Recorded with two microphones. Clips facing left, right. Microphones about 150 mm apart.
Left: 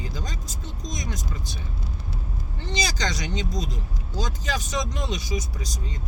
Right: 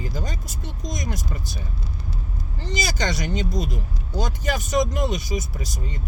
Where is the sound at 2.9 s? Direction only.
55° right (ahead or behind).